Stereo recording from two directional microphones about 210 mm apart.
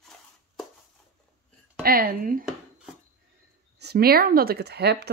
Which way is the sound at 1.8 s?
45° right (ahead or behind).